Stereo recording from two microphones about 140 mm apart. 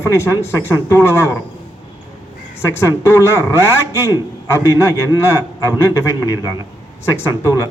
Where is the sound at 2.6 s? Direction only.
20° left (ahead or behind).